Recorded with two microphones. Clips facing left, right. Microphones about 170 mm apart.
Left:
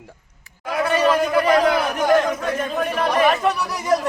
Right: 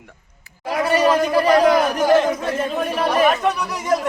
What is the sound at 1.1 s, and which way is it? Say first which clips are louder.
A man's voice: right 1 dB; 30° right (ahead or behind).